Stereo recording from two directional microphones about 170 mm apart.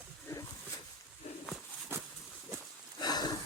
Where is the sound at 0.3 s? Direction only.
15° left (ahead or behind).